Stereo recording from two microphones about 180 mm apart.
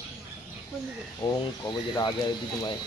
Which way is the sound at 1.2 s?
20° left (ahead or behind).